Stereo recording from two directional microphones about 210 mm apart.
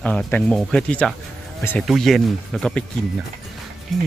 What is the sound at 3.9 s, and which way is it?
Speech, centre (ahead or behind).